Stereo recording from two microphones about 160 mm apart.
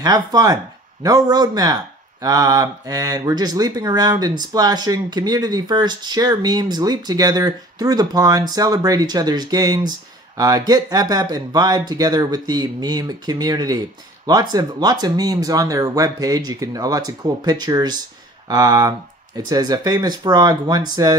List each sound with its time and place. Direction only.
0.0 s speech: 25° right (ahead or behind)